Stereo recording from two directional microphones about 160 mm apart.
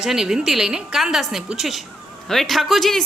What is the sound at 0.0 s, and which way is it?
Speech, 5° right (ahead or behind).